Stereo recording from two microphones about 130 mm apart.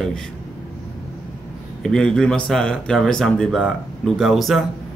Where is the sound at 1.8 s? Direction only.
5° left (ahead or behind).